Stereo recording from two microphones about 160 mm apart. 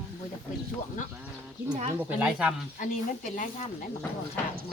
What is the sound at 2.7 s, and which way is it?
Speech, 55° left (ahead or behind).